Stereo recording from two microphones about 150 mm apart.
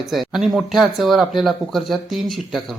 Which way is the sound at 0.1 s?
Centre (ahead or behind).